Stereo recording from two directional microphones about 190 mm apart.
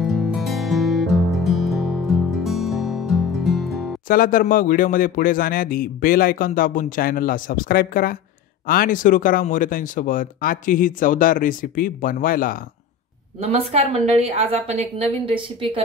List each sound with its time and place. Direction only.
0.0 s music: centre (ahead or behind)
4.1 s a man's voice: 45° left (ahead or behind)
13.4 s a woman's voice: 30° right (ahead or behind)